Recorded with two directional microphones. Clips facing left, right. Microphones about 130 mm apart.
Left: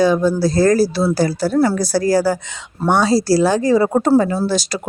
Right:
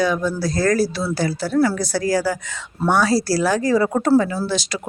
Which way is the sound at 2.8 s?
25° left (ahead or behind).